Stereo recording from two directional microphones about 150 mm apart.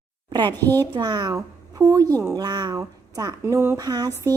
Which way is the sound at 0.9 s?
30° right (ahead or behind).